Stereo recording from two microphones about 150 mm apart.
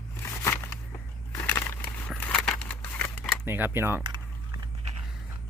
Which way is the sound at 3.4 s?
15° right (ahead or behind).